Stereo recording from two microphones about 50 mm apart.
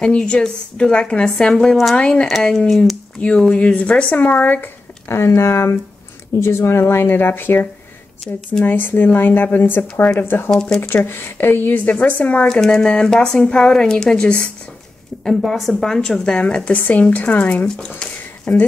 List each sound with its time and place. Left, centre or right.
0.0 s a woman's voice: centre
2.0 s speech: left
2.5 s a woman's voice: centre
3.2 s speech: left
5.0 s speech: left
8.2 s a woman's voice: centre
8.6 s speech: left
10.5 s a woman's voice: centre
11.1 s speech: left
11.8 s a woman's voice: left
12.4 s a woman's voice: centre
15.2 s a woman's voice: centre
15.8 s speech: centre; by 17.6 s left
17.6 s speech: centre